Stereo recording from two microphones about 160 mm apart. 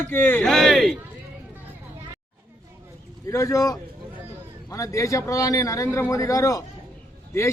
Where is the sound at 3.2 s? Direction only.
20° left (ahead or behind).